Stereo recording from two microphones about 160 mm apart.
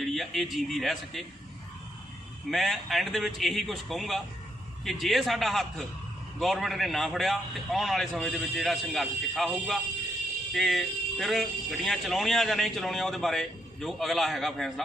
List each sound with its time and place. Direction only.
0.0 s a man's voice: centre (ahead or behind)
2.5 s a man's voice: centre (ahead or behind)